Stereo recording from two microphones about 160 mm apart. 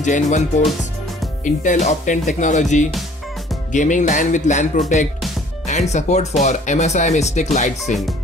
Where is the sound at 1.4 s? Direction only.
55° left (ahead or behind).